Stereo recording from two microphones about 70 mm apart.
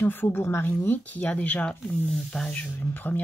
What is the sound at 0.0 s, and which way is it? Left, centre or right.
Speech, left.